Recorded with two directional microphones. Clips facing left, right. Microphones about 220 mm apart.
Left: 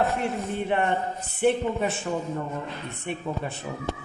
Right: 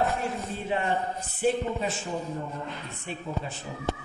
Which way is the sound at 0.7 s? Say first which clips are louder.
Left 1 dB; 60° left (ahead or behind).